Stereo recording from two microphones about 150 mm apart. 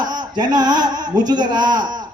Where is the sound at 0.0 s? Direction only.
25° right (ahead or behind).